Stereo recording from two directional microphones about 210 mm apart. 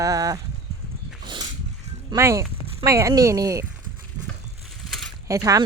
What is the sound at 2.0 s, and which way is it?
Speech, 15° right (ahead or behind).